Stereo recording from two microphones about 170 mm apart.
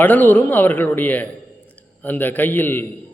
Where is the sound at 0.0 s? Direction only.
10° left (ahead or behind).